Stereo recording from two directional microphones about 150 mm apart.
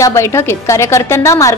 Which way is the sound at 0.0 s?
20° left (ahead or behind).